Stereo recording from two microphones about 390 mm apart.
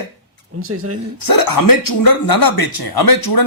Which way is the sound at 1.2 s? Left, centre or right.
Left.